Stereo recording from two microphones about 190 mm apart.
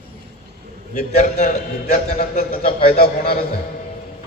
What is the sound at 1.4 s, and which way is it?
A man's voice, 50° left (ahead or behind).